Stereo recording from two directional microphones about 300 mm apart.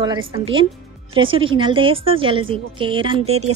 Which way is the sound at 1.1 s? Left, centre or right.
Centre.